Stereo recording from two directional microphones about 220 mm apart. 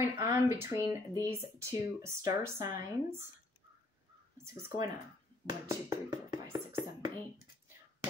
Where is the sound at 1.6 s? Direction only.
10° right (ahead or behind).